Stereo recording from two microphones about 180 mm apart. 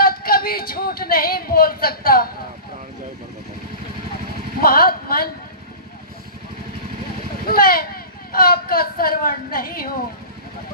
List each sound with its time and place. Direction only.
0.0 s a sound: 55° left (ahead or behind)
4.6 s speech: 55° left (ahead or behind)
7.4 s speech: 55° left (ahead or behind)